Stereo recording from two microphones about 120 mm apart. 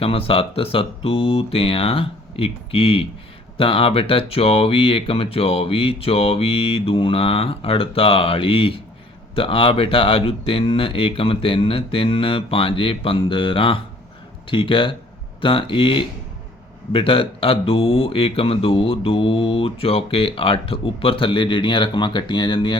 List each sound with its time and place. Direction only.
0.0 s speech: 50° left (ahead or behind)